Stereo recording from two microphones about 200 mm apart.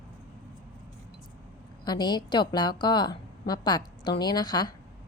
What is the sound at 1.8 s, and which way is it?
A woman's voice, 20° left (ahead or behind).